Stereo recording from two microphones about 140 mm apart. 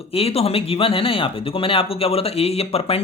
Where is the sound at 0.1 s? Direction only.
45° left (ahead or behind).